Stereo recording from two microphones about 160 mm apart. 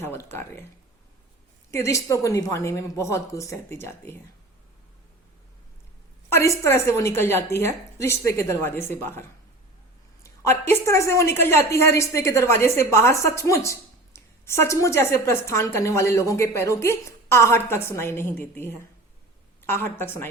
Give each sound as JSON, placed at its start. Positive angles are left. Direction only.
{"t": 0.0, "sound": "a woman's voice", "side_deg": 15}
{"t": 1.7, "sound": "a woman's voice", "side_deg": 20}
{"t": 6.3, "sound": "a woman's voice", "side_deg": 20}
{"t": 10.2, "sound": "a woman's voice", "side_deg": 15}